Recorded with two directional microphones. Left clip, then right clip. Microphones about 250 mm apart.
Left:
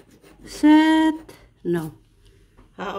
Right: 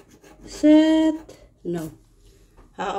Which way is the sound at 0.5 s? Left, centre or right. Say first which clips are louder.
Even; left.